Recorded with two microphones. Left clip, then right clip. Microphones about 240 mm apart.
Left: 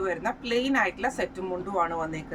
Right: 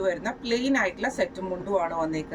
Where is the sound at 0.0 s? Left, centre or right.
Centre.